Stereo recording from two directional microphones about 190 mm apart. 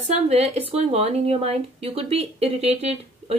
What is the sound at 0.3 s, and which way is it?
Speech, 30° right (ahead or behind).